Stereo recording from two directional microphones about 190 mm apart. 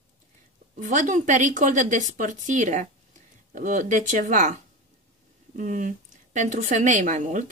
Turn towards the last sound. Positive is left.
turn(degrees=-40)  # may be behind; listen again after turning